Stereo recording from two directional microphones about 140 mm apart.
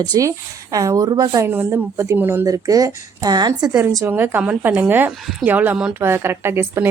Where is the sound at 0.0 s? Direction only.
25° right (ahead or behind).